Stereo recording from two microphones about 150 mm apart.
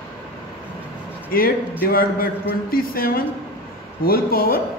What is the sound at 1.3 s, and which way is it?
A man's voice, 75° left (ahead or behind).